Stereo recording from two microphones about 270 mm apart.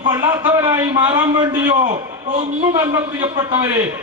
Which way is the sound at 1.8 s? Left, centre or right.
Right.